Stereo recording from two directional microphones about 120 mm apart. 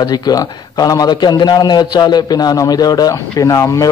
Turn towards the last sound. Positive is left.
turn(degrees=25)  # may be behind; listen again after turning